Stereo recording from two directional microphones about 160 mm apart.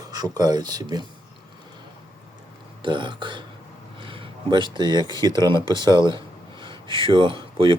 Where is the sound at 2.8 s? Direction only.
30° right (ahead or behind).